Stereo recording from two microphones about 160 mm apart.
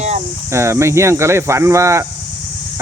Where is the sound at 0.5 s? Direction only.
15° right (ahead or behind).